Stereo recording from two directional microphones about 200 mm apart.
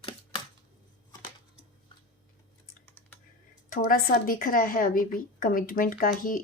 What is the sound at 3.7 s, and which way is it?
Speech, 45° left (ahead or behind).